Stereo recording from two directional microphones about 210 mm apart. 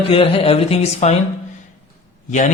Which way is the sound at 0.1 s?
25° left (ahead or behind).